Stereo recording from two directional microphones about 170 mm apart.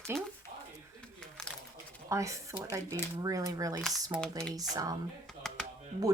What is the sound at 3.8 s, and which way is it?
Speech, centre (ahead or behind).